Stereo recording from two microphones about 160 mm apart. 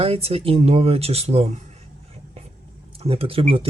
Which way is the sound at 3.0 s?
35° right (ahead or behind).